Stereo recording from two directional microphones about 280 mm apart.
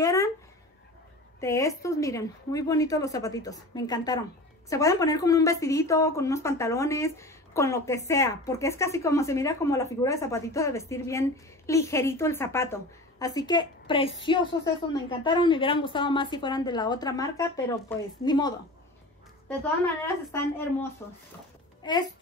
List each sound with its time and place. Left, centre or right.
0.0 s a sound: centre
1.4 s a woman's voice: centre
20.2 s a woman's voice: centre